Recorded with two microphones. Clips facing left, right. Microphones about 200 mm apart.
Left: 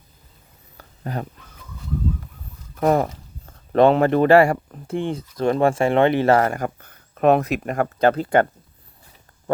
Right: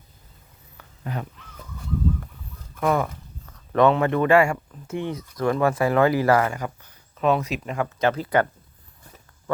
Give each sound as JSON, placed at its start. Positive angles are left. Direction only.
{"t": 0.8, "sound": "a sound", "side_deg": 40}
{"t": 2.7, "sound": "speech", "side_deg": 40}
{"t": 6.4, "sound": "speech", "side_deg": 50}
{"t": 8.0, "sound": "speech", "side_deg": 30}